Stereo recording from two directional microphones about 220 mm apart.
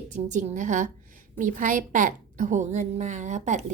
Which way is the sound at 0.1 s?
35° right (ahead or behind).